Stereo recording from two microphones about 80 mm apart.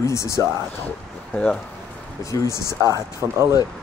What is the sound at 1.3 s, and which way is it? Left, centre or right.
Speech, centre.